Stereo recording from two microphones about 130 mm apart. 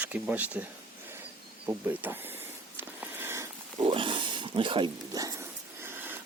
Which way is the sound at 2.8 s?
15° right (ahead or behind).